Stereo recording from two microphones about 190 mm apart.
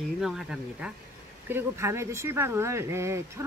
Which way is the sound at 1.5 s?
10° right (ahead or behind).